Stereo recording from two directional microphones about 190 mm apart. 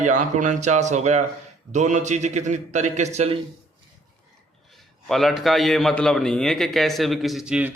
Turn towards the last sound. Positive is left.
turn(degrees=-5)  # may be behind; listen again after turning